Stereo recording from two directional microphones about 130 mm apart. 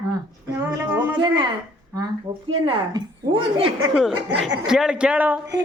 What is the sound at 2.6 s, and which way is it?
Speech, 35° right (ahead or behind).